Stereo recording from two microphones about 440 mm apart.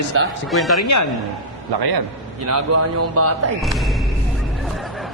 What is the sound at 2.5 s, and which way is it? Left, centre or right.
Speech, right.